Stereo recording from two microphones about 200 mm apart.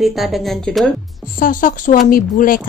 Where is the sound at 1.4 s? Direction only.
45° left (ahead or behind).